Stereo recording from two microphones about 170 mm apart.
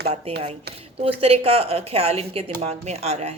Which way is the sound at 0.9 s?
35° right (ahead or behind).